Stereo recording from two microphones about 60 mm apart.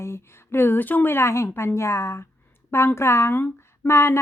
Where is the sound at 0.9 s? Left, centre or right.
Left.